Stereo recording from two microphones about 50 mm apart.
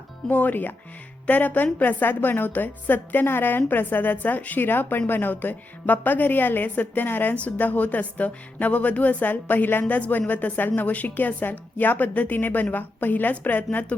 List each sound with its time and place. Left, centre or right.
0.3 s a woman's voice: left